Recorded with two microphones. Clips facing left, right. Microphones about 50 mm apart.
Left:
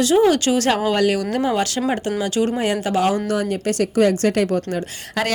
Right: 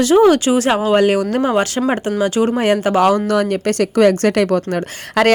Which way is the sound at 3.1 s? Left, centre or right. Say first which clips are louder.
Right 5 dB; right.